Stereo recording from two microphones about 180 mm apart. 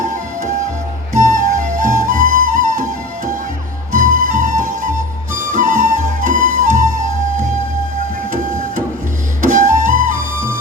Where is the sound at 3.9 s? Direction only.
45° right (ahead or behind).